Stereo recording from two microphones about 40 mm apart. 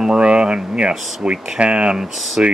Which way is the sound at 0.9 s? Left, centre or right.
Centre.